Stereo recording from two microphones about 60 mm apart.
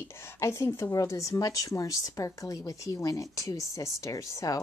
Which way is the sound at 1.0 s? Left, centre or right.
Left.